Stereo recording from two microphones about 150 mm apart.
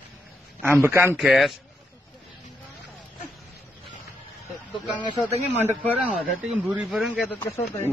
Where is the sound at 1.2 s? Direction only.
Centre (ahead or behind).